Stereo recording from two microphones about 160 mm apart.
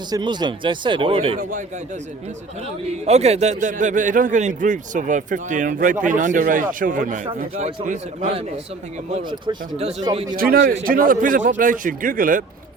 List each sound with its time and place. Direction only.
0.1 s speech: 30° right (ahead or behind)
3.1 s a man's voice: 45° right (ahead or behind)
7.6 s a man's voice: 45° right (ahead or behind)
9.5 s speech: 40° right (ahead or behind)
10.0 s speech: 25° right (ahead or behind)
10.3 s a man's voice: 65° right (ahead or behind)